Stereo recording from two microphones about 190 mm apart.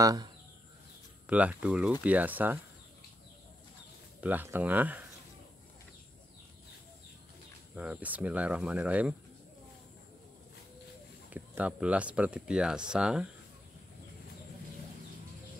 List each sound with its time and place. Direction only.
0.0 s speech: 20° right (ahead or behind)
1.2 s speech: 5° right (ahead or behind)
4.2 s speech: 10° right (ahead or behind)
7.7 s speech: 5° right (ahead or behind)
11.3 s speech: 10° right (ahead or behind)